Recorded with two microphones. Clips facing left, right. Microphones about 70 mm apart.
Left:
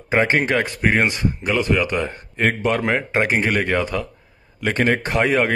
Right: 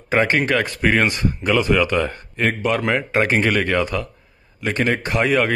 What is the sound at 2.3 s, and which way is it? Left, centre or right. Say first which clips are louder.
Speech: left 1 dB; left.